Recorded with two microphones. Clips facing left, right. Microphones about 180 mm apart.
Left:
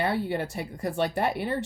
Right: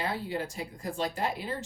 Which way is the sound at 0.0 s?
65° left (ahead or behind).